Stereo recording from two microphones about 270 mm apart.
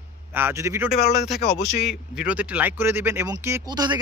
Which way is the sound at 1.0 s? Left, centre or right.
Left.